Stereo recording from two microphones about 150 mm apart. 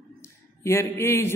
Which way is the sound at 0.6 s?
15° left (ahead or behind).